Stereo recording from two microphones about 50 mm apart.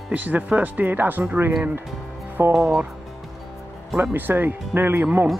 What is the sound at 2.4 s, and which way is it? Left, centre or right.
Speech, right.